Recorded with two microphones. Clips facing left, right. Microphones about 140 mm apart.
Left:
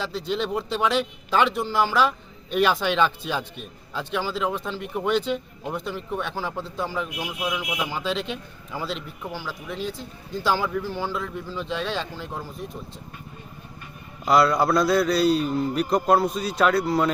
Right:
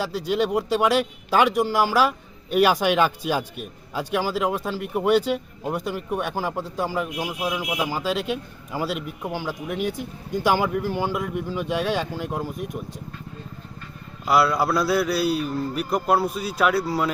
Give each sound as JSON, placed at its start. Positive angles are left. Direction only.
{"t": 0.0, "sound": "a man's voice", "side_deg": -10}
{"t": 14.3, "sound": "a man's voice", "side_deg": -5}
{"t": 15.4, "sound": "a man's voice", "side_deg": 15}
{"t": 15.7, "sound": "a man's voice", "side_deg": -5}